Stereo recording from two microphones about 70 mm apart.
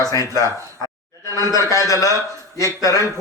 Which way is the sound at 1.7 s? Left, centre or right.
Left.